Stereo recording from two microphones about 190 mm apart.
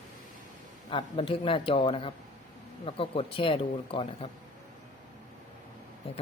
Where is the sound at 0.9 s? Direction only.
30° left (ahead or behind).